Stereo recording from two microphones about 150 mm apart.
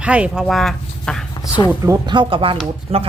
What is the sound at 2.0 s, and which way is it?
Speech, 30° right (ahead or behind).